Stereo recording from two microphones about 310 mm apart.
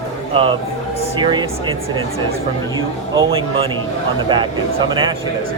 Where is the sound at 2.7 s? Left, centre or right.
Centre.